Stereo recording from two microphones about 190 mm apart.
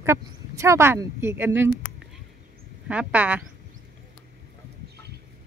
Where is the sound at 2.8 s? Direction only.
5° right (ahead or behind).